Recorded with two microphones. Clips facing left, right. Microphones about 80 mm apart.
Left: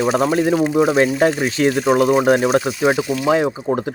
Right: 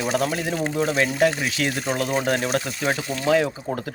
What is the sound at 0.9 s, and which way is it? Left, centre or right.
Speech, left.